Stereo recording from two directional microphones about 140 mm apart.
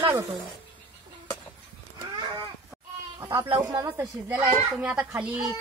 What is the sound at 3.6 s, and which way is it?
Speech, 20° right (ahead or behind).